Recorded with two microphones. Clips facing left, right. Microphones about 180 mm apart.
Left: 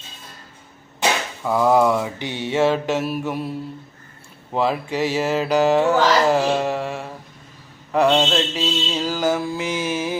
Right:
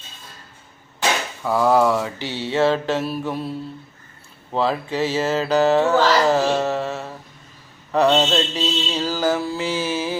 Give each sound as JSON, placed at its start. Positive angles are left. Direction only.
{"t": 1.4, "sound": "a sound", "side_deg": 0}
{"t": 1.7, "sound": "mantra", "side_deg": 15}
{"t": 4.5, "sound": "mantra", "side_deg": 15}